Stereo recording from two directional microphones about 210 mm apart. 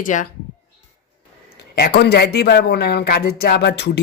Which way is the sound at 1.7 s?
50° left (ahead or behind).